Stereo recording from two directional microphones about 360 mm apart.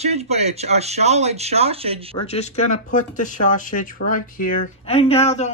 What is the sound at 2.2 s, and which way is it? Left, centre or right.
Speech, centre.